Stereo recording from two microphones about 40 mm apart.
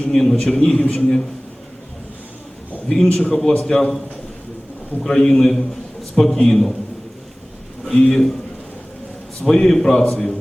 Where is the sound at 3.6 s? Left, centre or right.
Centre.